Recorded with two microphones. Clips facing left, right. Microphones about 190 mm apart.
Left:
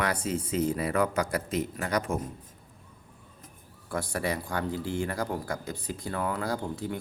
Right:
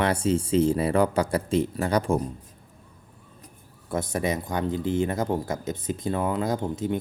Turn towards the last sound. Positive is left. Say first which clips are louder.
# right 5 dB
turn(degrees=-20)  # may be behind; listen again after turning